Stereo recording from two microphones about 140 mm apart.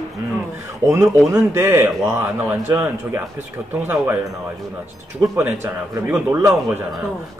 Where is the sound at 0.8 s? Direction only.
20° right (ahead or behind).